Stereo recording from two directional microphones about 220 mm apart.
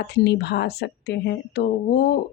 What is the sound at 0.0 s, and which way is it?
A woman's voice, 50° left (ahead or behind).